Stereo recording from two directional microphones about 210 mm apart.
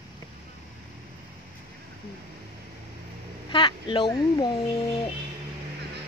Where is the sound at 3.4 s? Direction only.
25° left (ahead or behind).